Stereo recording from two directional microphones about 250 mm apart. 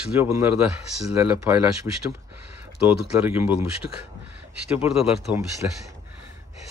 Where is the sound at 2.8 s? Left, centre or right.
Centre.